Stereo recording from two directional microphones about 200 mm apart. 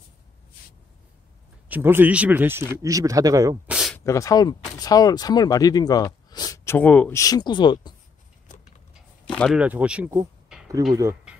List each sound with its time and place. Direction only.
1.7 s speech: 10° right (ahead or behind)
3.7 s a sound: centre (ahead or behind)
4.0 s speech: 15° left (ahead or behind)
9.4 s speech: 5° right (ahead or behind)